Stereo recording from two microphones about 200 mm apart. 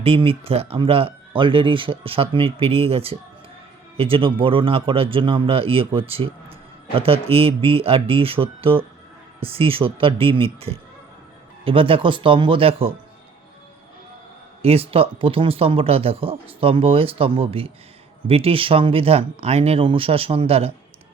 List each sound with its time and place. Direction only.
0.0 s speech: 30° right (ahead or behind)
14.6 s speech: 30° right (ahead or behind)